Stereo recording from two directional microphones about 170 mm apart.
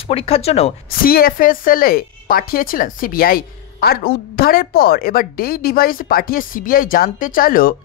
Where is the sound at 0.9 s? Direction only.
60° left (ahead or behind).